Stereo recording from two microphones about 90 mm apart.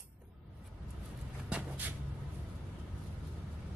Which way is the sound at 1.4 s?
15° right (ahead or behind).